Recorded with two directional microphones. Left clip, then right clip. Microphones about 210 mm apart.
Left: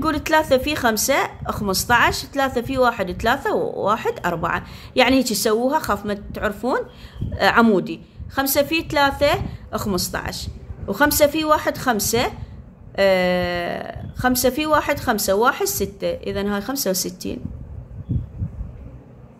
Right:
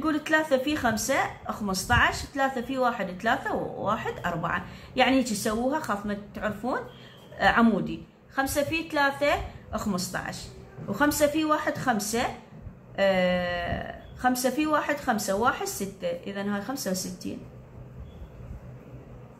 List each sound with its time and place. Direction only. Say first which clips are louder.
0.0 s a woman's voice: left 7 dB; 60° left (ahead or behind)